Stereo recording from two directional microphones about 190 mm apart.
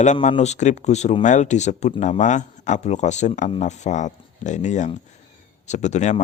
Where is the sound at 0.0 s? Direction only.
40° left (ahead or behind).